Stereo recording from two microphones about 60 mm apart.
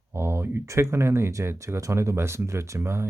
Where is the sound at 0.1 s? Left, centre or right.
Right.